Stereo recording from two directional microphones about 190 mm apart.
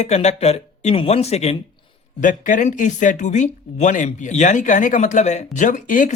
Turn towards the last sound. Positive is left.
turn(degrees=45)  # may be behind; listen again after turning